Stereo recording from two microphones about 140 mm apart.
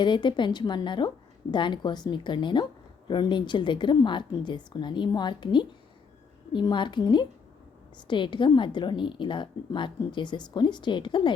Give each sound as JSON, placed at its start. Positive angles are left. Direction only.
{"t": 0.0, "sound": "a woman's voice", "side_deg": 35}